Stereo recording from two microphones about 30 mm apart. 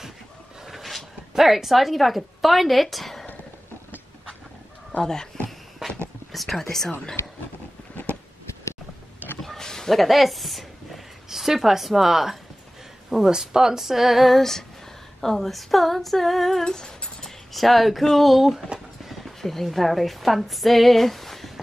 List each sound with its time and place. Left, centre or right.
0.7 s a sound: centre
1.3 s a woman's voice: centre
5.0 s speech: left
6.5 s speech: centre
9.6 s a sound: centre
9.8 s speech: centre
11.2 s speech: centre
14.3 s a woman's voice: centre
16.6 s a sound: left
17.2 s a sound: centre
18.1 s a woman's voice: centre
19.4 s a woman's voice: centre